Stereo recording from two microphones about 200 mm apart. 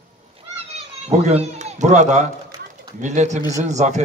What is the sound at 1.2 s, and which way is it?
A man's voice, 35° right (ahead or behind).